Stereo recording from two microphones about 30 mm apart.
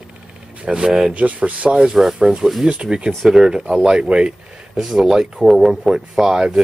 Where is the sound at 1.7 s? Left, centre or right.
Right.